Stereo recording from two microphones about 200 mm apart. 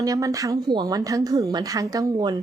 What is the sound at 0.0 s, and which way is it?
A woman's voice, 15° right (ahead or behind).